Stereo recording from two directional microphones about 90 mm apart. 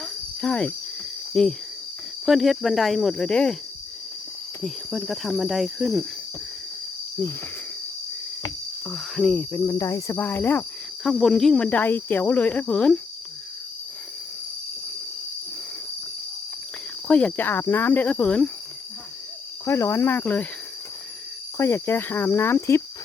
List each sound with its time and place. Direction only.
0.0 s jingle bell: 10° left (ahead or behind)
1.3 s cricket: 10° left (ahead or behind)
2.2 s speech: centre (ahead or behind)
4.6 s speech: centre (ahead or behind)
8.9 s cricket: 5° left (ahead or behind)
9.6 s speech: 40° left (ahead or behind)
10.2 s speech: 25° left (ahead or behind)
11.0 s speech: centre (ahead or behind)
17.1 s speech: 15° left (ahead or behind)
19.6 s speech: 30° left (ahead or behind)
21.6 s speech: 30° left (ahead or behind)